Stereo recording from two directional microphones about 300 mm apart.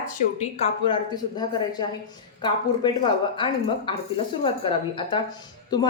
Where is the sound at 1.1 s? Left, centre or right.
Centre.